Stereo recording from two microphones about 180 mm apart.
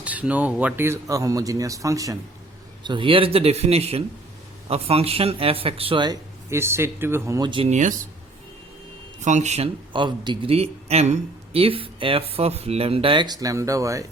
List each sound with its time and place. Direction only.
0.0 s a man's voice: 10° right (ahead or behind); by 7.7 s 25° right (ahead or behind)
7.7 s speech: 45° right (ahead or behind)
9.2 s a man's voice: 40° right (ahead or behind); by 14.0 s 20° right (ahead or behind)